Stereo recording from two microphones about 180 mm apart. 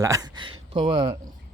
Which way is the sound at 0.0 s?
20° right (ahead or behind).